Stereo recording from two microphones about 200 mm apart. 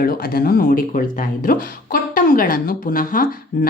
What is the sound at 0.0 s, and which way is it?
Speech, 50° left (ahead or behind).